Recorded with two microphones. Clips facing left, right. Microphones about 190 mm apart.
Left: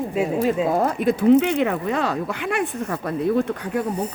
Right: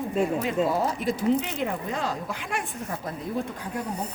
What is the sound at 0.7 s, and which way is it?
Speech, 55° left (ahead or behind).